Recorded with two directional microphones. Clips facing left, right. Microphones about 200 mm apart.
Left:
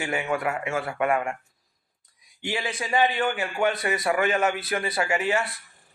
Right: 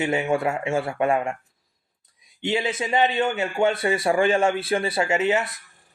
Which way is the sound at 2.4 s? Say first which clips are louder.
Right 5 dB; 25° right (ahead or behind).